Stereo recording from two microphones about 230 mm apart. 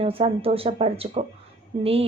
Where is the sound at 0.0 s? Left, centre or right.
Right.